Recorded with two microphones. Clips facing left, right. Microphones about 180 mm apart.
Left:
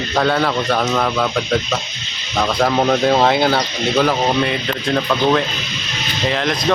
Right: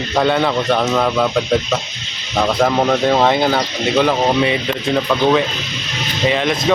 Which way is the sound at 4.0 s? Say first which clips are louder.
Right 2 dB; 15° right (ahead or behind).